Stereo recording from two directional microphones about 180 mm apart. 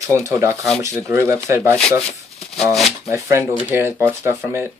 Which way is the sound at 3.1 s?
15° right (ahead or behind).